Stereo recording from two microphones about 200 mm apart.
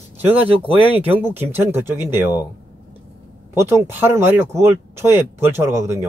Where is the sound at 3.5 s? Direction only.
15° right (ahead or behind).